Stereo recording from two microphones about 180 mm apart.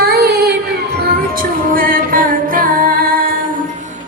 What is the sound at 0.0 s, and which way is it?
Child singing, 60° right (ahead or behind).